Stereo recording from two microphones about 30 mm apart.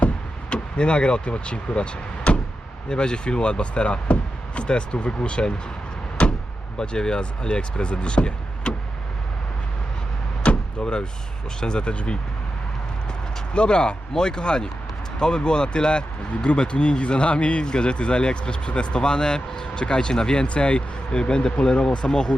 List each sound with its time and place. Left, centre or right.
0.5 s speech: left
6.7 s speech: left
10.4 s door: left
10.8 s speech: left
13.5 s speech: left
17.6 s speech: left
20.5 s speech: left